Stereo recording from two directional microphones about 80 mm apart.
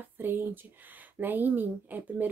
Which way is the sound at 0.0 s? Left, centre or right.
Right.